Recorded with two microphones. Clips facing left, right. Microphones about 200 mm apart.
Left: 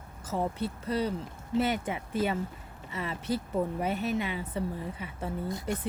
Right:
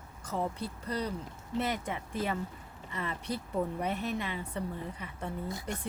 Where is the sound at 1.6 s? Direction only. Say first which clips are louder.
Left 5 dB; 5° left (ahead or behind).